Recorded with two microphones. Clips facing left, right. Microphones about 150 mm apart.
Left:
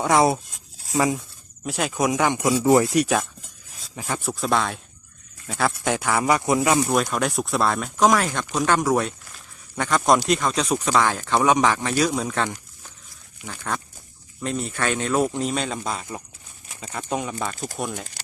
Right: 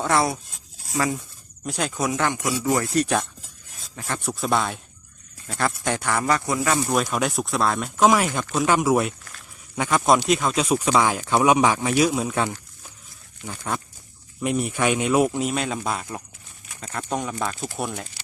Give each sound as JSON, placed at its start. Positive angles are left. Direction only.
{"t": 0.0, "sound": "speech", "side_deg": 20}
{"t": 1.6, "sound": "speech", "side_deg": 5}
{"t": 2.0, "sound": "speech", "side_deg": 15}
{"t": 2.6, "sound": "speech", "side_deg": 25}
{"t": 2.9, "sound": "speech", "side_deg": 10}
{"t": 4.2, "sound": "speech", "side_deg": 0}
{"t": 6.8, "sound": "speech", "side_deg": 0}